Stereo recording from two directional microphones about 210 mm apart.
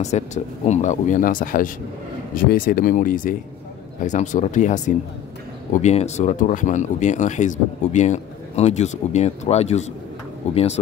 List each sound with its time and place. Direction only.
0.0 s speech: 35° left (ahead or behind)